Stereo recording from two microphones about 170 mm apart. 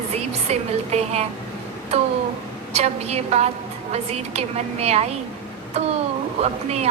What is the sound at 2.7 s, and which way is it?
A woman's voice, 40° right (ahead or behind).